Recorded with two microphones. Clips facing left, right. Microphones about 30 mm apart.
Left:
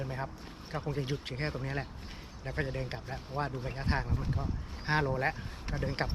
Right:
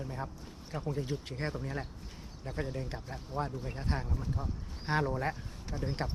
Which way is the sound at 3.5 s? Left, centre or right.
Left.